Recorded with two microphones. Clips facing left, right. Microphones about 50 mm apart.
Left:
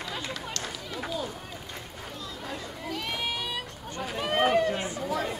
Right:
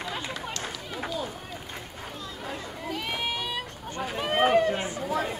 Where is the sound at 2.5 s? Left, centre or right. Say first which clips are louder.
Right 2 dB; right.